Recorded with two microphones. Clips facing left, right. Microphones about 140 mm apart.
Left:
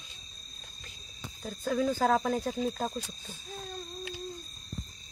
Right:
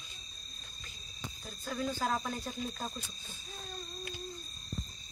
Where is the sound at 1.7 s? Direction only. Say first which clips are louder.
Left 7 dB; 90° left.